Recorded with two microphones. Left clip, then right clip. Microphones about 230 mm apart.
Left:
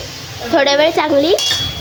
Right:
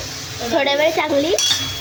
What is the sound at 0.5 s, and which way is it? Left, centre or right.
Dishes, centre.